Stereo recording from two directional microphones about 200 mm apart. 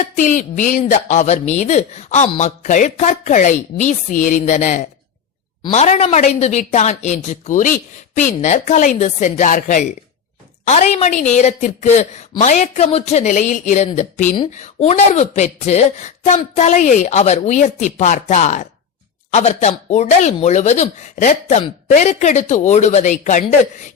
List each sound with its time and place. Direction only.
0.0 s speech: 40° left (ahead or behind)